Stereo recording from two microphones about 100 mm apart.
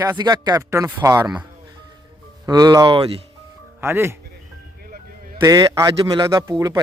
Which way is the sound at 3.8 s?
25° right (ahead or behind).